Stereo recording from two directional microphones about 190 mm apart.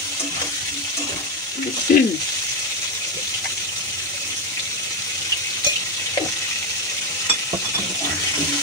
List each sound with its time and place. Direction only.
1.9 s frying: 50° left (ahead or behind)